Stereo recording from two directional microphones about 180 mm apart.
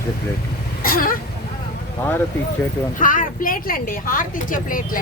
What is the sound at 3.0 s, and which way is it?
A woman's voice, 50° left (ahead or behind).